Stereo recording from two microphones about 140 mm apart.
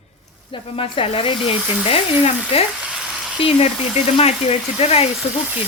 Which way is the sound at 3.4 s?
40° left (ahead or behind).